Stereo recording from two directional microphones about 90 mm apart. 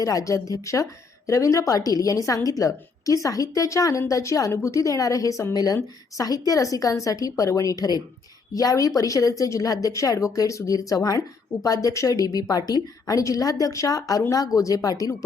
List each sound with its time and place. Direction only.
0.0 s a woman's voice: 40° left (ahead or behind)